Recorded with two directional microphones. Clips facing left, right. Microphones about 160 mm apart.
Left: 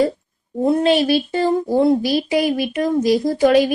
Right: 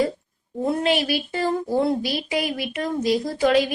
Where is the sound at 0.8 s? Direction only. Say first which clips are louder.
Left 7 dB; 30° left (ahead or behind).